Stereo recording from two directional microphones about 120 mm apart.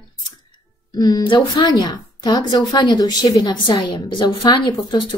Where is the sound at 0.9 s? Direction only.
35° left (ahead or behind).